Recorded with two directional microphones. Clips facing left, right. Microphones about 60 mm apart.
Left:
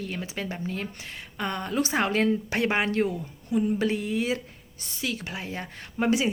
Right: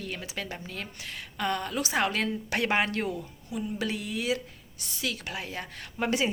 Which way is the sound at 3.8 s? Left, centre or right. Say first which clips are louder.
Left 6 dB; left.